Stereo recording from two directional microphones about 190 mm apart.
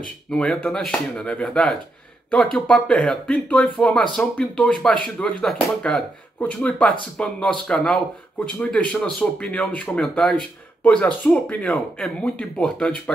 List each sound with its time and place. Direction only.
0.3 s speech: 5° left (ahead or behind)